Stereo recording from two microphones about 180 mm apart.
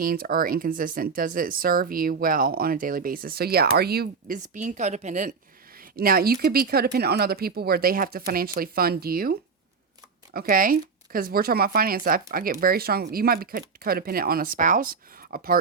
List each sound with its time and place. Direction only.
0.0 s speech: 55° right (ahead or behind)
5.7 s speech: 55° right (ahead or behind)